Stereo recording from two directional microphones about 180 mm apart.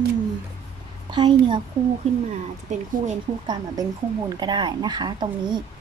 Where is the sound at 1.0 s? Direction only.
25° right (ahead or behind).